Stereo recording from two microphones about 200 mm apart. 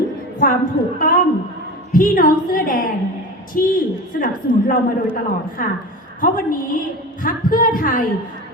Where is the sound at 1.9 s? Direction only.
45° left (ahead or behind).